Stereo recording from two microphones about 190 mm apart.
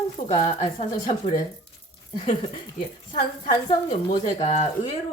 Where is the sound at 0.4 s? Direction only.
35° left (ahead or behind).